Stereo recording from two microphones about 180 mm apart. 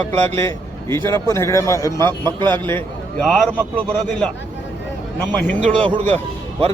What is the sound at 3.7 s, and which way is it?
Speech, 30° right (ahead or behind).